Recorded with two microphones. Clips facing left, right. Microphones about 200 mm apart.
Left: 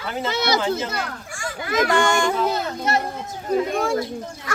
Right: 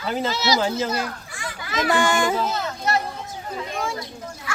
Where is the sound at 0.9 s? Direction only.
50° left (ahead or behind).